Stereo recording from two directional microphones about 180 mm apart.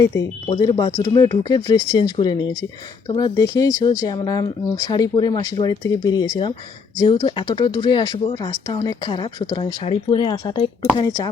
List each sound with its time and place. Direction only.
0.5 s speech: 25° left (ahead or behind)